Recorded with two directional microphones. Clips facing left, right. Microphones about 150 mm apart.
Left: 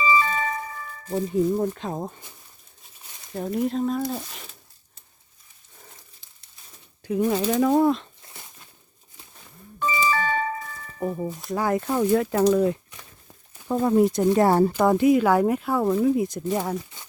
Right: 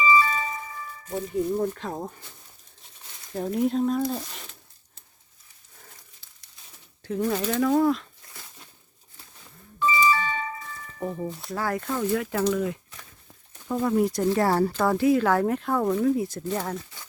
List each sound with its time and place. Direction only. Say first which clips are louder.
0.0 s a sound: even; 45° left (ahead or behind)
1.0 s speech: left 4 dB; 25° left (ahead or behind)
3.3 s speech: right 1 dB; centre (ahead or behind)
7.0 s speech: left 3 dB; 15° left (ahead or behind)
7.6 s a sound: left 1 dB; 20° left (ahead or behind)
10.1 s music: left 2 dB; 45° left (ahead or behind)
10.8 s music: left 3 dB; 25° left (ahead or behind)
11.5 s speech: left 5 dB; 20° left (ahead or behind)
11.9 s speech: left 6 dB; 35° left (ahead or behind)
13.8 s speech: left 4 dB; 25° left (ahead or behind); by 16.0 s 5° left (ahead or behind)
16.0 s speech: left 2 dB; 15° left (ahead or behind)